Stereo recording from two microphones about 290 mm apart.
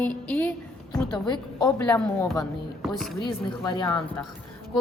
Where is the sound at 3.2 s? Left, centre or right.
Centre.